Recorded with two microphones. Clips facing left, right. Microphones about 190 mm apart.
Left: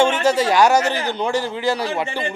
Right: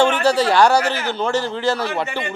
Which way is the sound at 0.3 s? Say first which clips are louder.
Even; 10° left (ahead or behind).